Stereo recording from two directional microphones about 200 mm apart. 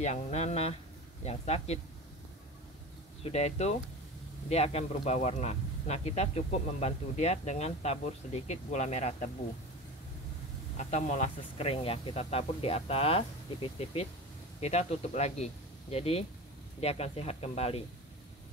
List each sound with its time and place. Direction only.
0.0 s speech: 35° left (ahead or behind)
3.3 s speech: 30° left (ahead or behind)
10.8 s speech: 35° left (ahead or behind)